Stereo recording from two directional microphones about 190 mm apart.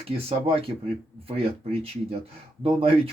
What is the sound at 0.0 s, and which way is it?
Speech, 30° right (ahead or behind).